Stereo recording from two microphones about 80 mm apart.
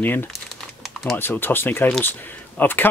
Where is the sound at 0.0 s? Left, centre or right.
Left.